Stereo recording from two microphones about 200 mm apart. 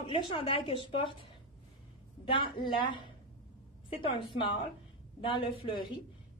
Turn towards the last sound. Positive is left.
turn(degrees=25)  # may be behind; listen again after turning